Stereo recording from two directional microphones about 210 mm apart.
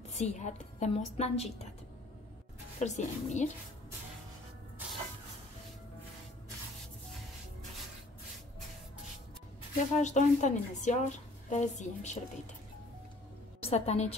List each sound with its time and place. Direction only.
0.1 s speech: 35° left (ahead or behind)
2.8 s speech: 35° left (ahead or behind)
9.9 s speech: 35° left (ahead or behind)
13.6 s a woman's voice: 30° left (ahead or behind)